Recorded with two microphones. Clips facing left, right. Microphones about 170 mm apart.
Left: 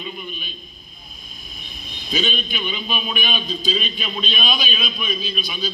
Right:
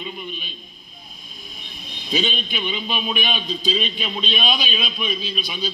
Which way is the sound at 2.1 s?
25° right (ahead or behind).